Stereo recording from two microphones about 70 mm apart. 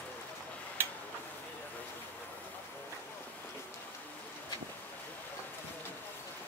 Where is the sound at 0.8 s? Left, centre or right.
Right.